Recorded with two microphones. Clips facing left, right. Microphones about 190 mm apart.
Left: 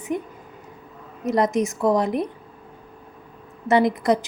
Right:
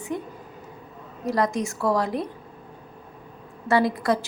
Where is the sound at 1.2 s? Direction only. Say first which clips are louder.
Left 4 dB; 20° left (ahead or behind).